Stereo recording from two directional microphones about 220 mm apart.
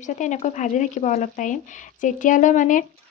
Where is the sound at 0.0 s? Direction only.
35° left (ahead or behind).